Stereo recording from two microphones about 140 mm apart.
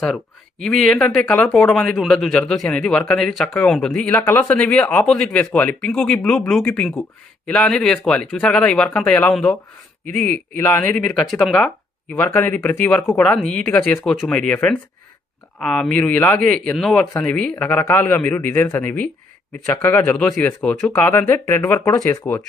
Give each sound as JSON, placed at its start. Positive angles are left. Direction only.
{"t": 0.6, "sound": "speech", "side_deg": 5}
{"t": 10.6, "sound": "speech", "side_deg": 10}